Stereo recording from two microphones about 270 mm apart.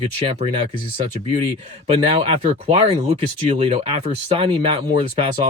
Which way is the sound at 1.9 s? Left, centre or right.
Right.